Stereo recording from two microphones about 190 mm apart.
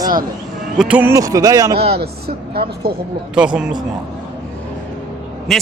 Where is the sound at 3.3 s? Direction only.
5° right (ahead or behind).